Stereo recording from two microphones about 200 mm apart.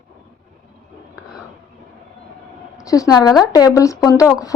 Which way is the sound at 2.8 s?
15° left (ahead or behind).